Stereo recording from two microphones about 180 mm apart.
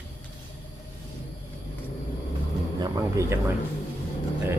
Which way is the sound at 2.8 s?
20° right (ahead or behind).